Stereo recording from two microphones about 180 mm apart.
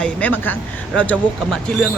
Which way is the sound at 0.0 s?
10° left (ahead or behind).